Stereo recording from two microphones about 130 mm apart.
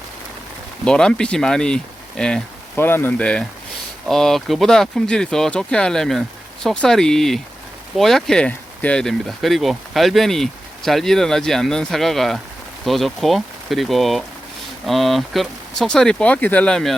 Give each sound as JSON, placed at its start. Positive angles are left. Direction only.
{"t": 0.9, "sound": "speech", "side_deg": 5}
{"t": 2.7, "sound": "speech", "side_deg": 15}